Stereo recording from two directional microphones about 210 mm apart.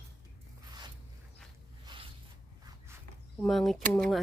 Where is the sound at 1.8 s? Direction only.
25° right (ahead or behind).